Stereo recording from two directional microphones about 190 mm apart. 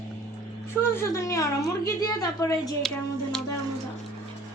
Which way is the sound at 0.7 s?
15° left (ahead or behind).